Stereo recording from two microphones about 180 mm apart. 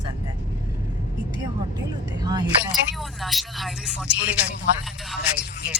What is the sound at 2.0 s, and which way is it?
Speech, 20° right (ahead or behind).